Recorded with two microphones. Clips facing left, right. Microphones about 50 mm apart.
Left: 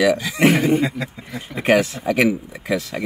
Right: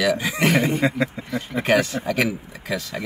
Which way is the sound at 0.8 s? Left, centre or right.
Right.